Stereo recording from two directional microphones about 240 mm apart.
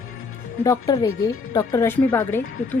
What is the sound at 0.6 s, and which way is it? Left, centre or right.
Speech, centre.